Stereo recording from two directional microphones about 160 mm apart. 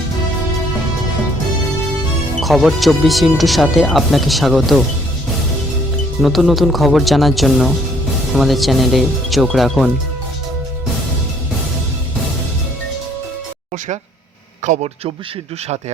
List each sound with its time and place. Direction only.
2.4 s speech: centre (ahead or behind)
6.2 s speech: centre (ahead or behind)
14.6 s speech: 45° right (ahead or behind)